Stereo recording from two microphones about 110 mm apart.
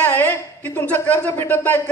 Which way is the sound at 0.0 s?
20° left (ahead or behind).